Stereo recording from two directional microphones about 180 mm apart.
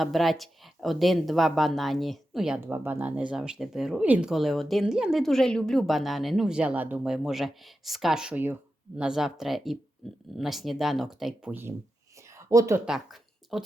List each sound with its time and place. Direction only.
0.0 s a woman's voice: centre (ahead or behind); by 12.8 s 15° right (ahead or behind)
12.8 s speech: centre (ahead or behind)